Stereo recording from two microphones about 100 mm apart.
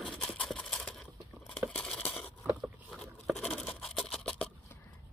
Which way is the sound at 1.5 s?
5° left (ahead or behind).